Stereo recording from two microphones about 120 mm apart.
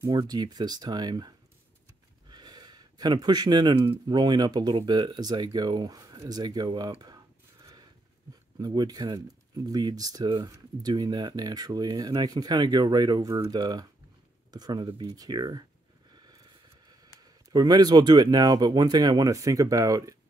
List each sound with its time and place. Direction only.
0.0 s speech: 30° right (ahead or behind)
2.2 s a sound: 35° right (ahead or behind)
4.1 s speech: 40° right (ahead or behind)
7.6 s a sound: 35° right (ahead or behind)
8.5 s speech: 35° right (ahead or behind)
13.3 s speech: 25° right (ahead or behind)
13.6 s speech: 35° right (ahead or behind)
16.1 s a sound: 35° right (ahead or behind)
17.5 s speech: 35° right (ahead or behind)